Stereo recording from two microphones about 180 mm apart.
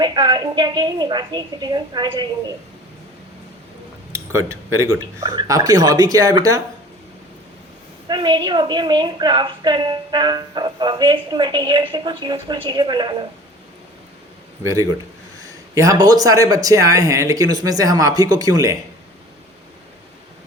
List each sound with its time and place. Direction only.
0.0 s a woman's voice: 25° right (ahead or behind)
4.1 s a woman's voice: 15° right (ahead or behind)
8.0 s a woman's voice: 25° right (ahead or behind)
14.6 s a woman's voice: 20° right (ahead or behind)